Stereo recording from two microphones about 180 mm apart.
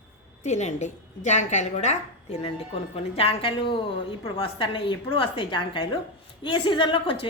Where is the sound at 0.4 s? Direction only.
40° left (ahead or behind).